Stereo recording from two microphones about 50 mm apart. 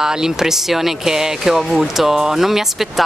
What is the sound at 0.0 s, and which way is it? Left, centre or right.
Speech, centre.